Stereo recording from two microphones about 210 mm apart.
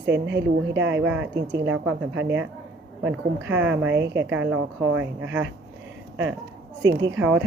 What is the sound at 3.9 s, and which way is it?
Speech, 55° right (ahead or behind).